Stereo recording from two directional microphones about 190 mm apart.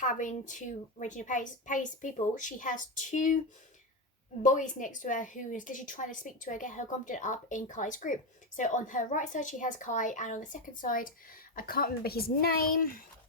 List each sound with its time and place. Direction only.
0.0 s a woman's voice: 40° left (ahead or behind)
4.4 s a woman's voice: 40° left (ahead or behind)